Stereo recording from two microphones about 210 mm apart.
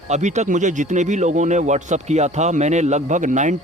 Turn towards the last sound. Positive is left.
turn(degrees=-35)  # may be behind; listen again after turning